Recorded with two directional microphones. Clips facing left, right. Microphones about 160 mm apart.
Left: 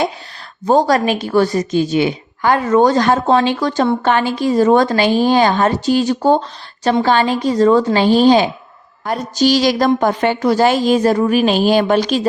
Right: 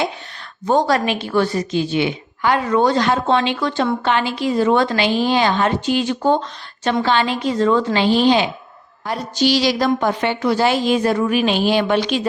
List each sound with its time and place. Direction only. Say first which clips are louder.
0.6 s a woman's voice: left 4 dB; 35° left (ahead or behind)